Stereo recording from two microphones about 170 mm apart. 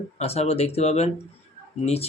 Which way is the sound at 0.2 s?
40° left (ahead or behind).